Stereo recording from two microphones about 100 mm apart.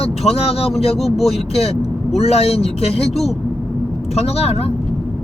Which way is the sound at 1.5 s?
90° left.